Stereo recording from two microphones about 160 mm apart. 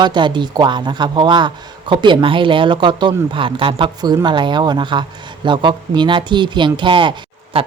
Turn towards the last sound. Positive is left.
turn(degrees=-35)  # may be behind; listen again after turning